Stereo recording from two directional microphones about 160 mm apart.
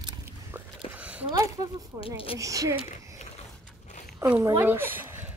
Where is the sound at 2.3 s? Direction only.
20° right (ahead or behind).